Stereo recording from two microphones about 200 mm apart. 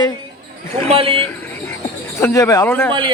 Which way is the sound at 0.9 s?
30° right (ahead or behind).